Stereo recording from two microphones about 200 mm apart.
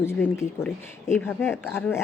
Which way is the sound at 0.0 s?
10° left (ahead or behind).